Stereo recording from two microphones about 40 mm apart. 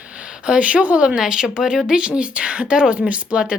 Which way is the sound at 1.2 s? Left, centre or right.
Centre.